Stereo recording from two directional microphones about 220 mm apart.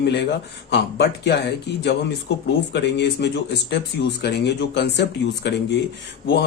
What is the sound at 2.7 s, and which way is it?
A man's voice, 50° left (ahead or behind).